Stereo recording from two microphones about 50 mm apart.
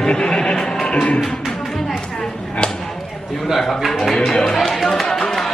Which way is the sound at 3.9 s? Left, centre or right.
Centre.